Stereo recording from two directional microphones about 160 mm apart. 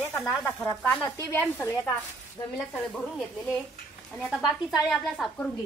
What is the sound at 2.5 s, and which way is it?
Speech, 5° left (ahead or behind).